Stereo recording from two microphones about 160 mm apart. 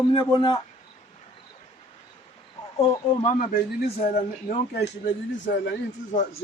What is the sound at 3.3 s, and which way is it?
Speech, 65° left (ahead or behind).